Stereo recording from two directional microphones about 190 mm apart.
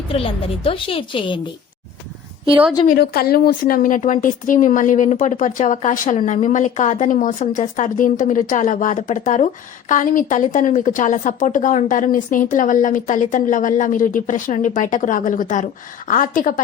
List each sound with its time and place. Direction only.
0.1 s a woman's voice: 30° left (ahead or behind)
2.8 s a woman's voice: 50° left (ahead or behind)